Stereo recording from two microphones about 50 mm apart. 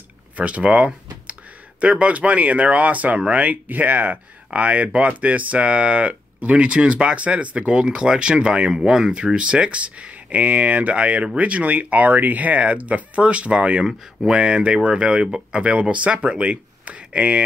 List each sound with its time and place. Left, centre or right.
0.4 s speech: right
3.6 s speech: right